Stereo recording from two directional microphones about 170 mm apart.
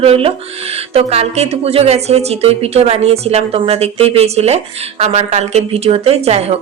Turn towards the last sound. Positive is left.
turn(degrees=-40)  # may be behind; listen again after turning